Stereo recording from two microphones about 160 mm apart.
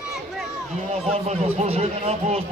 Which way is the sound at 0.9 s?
40° right (ahead or behind).